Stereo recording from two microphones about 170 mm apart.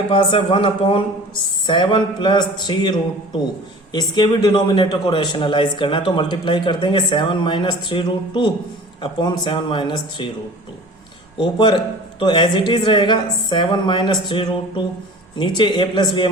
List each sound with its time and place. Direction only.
0.1 s a man's voice: 30° left (ahead or behind)
3.9 s a man's voice: 25° left (ahead or behind)
11.3 s a man's voice: 25° left (ahead or behind)